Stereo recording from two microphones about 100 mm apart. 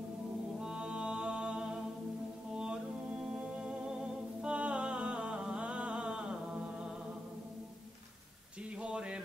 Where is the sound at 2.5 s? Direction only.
10° right (ahead or behind).